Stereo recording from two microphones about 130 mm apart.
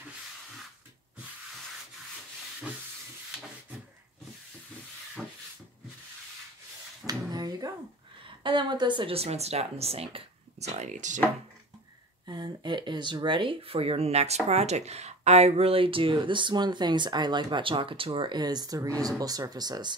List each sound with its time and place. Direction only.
7.1 s a sound: 30° right (ahead or behind)
8.5 s speech: 35° right (ahead or behind); by 11.1 s 70° right (ahead or behind)
12.3 s speech: 35° right (ahead or behind)